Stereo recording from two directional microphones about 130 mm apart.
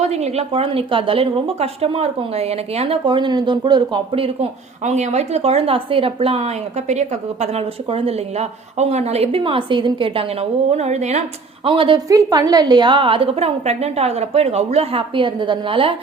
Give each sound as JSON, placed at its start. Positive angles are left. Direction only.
{"t": 0.0, "sound": "speech", "side_deg": -55}
{"t": 3.0, "sound": "speech", "side_deg": -35}
{"t": 4.8, "sound": "speech", "side_deg": -60}
{"t": 10.7, "sound": "speech", "side_deg": -60}
{"t": 11.6, "sound": "speech", "side_deg": -40}
{"t": 12.0, "sound": "speech", "side_deg": -30}